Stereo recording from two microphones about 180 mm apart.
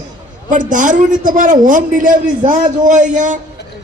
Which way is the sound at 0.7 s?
45° right (ahead or behind).